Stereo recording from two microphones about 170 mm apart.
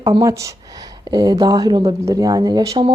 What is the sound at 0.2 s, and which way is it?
Speech, 20° right (ahead or behind).